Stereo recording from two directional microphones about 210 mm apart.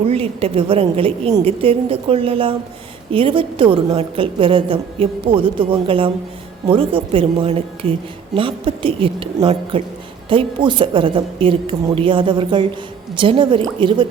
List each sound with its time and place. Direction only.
0.1 s a woman's voice: 25° right (ahead or behind)